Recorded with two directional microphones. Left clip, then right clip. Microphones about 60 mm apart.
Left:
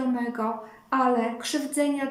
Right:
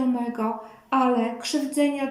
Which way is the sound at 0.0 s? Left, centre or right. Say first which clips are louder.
Right 2 dB; right.